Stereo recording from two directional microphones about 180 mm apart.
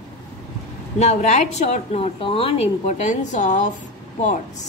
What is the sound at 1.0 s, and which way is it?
A woman's voice, 40° left (ahead or behind).